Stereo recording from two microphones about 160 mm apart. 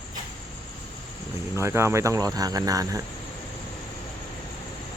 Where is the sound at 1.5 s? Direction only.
15° right (ahead or behind).